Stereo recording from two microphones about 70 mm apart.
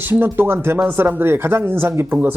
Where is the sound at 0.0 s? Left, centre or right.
Right.